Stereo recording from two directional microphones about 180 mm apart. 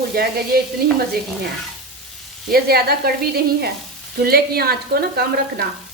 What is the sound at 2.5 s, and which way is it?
Speech, 60° right (ahead or behind).